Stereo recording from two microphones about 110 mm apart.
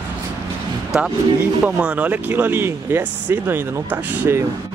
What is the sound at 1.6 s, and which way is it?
Speech, 10° right (ahead or behind).